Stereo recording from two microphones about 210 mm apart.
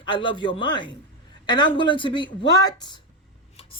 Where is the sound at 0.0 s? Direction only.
25° left (ahead or behind).